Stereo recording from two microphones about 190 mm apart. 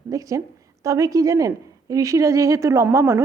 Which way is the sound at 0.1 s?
15° right (ahead or behind).